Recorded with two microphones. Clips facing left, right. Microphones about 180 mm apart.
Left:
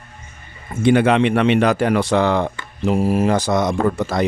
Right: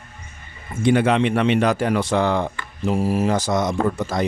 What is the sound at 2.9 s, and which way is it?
Speech, 55° left (ahead or behind).